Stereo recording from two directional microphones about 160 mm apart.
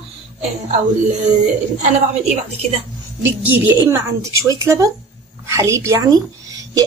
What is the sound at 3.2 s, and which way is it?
A woman's voice, 10° right (ahead or behind).